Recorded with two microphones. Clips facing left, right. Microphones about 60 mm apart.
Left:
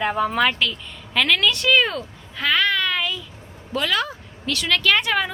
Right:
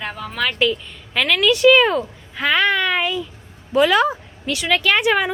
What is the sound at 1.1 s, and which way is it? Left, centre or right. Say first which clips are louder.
Speech: right 3 dB; centre.